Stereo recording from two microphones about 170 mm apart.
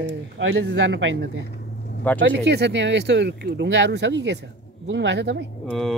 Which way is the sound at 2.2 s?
90° right.